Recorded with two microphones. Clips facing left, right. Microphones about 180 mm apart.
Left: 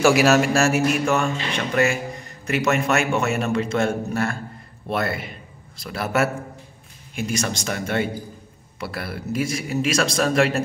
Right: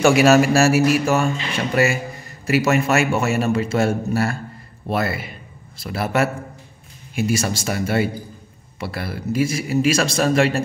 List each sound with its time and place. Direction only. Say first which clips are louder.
0.0 s a man's voice: right 3 dB; centre (ahead or behind)